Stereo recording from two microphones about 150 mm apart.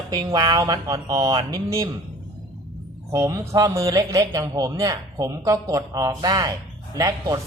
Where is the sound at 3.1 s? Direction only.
20° right (ahead or behind).